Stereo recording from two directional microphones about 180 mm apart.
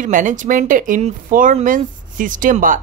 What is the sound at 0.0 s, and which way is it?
Speech, 45° right (ahead or behind).